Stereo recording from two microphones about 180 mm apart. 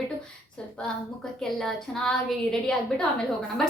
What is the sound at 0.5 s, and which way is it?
A woman's voice, 5° left (ahead or behind).